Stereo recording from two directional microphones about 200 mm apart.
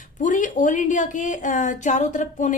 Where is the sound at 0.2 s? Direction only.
40° left (ahead or behind).